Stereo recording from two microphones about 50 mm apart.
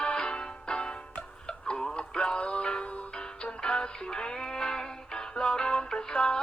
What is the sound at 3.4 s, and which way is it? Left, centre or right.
Music, centre.